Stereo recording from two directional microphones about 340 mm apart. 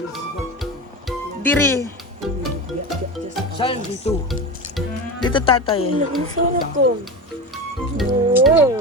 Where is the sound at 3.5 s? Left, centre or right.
Centre.